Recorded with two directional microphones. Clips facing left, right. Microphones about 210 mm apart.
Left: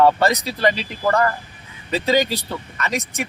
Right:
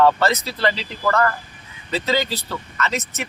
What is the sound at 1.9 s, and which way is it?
Speech, 15° left (ahead or behind).